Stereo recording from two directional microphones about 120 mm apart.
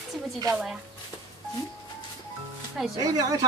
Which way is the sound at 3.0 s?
30° right (ahead or behind).